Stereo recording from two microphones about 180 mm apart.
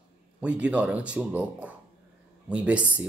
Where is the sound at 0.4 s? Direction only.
5° right (ahead or behind).